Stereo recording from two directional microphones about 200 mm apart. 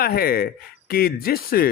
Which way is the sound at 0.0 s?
50° left (ahead or behind).